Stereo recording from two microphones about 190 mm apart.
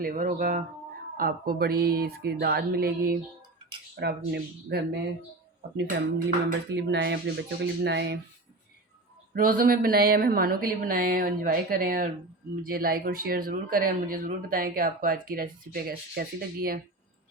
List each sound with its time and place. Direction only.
0.0 s speech: 45° right (ahead or behind)
4.0 s dishes: 60° right (ahead or behind)
9.3 s speech: 50° right (ahead or behind)